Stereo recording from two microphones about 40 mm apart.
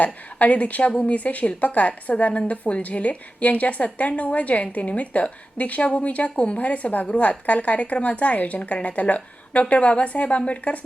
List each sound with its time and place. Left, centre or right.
0.0 s a woman's voice: left